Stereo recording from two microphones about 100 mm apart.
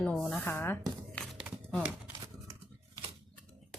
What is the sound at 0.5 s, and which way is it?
Speech, 20° left (ahead or behind).